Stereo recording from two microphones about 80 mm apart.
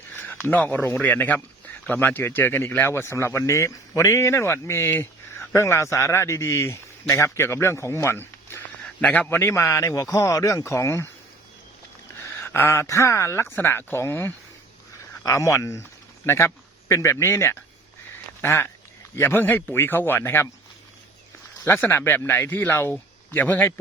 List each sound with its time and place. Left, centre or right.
0.2 s speech: left
9.4 s speech: left
12.2 s speech: left
21.6 s speech: left